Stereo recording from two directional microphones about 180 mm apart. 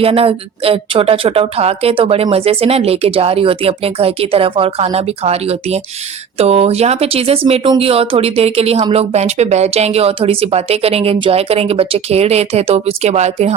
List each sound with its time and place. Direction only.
0.0 s speech: 30° right (ahead or behind)